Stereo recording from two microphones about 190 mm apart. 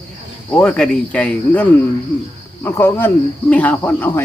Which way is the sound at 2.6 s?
10° left (ahead or behind).